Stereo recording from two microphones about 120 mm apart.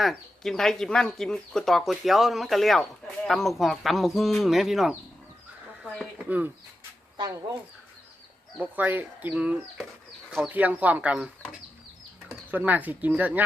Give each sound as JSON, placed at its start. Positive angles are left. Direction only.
{"t": 0.0, "sound": "speech", "side_deg": 0}
{"t": 6.1, "sound": "speech", "side_deg": -15}
{"t": 7.2, "sound": "speech", "side_deg": -35}
{"t": 8.5, "sound": "speech", "side_deg": -15}
{"t": 12.5, "sound": "speech", "side_deg": -15}